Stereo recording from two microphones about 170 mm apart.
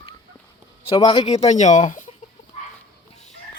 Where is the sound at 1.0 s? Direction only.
30° left (ahead or behind); by 2.1 s 50° left (ahead or behind).